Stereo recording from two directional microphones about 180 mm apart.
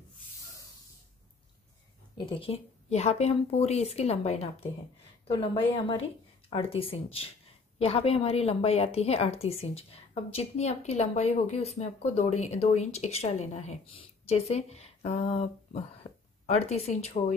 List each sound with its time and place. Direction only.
2.1 s a woman's voice: 35° left (ahead or behind)
5.5 s a woman's voice: 25° left (ahead or behind)